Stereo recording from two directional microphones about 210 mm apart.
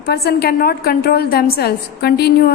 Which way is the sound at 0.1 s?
50° left (ahead or behind).